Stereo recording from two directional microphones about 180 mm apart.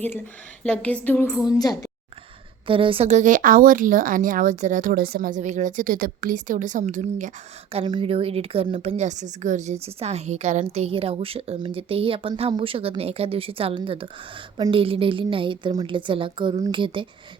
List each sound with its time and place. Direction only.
0.6 s a woman's voice: 5° left (ahead or behind)
2.6 s a woman's voice: 30° right (ahead or behind)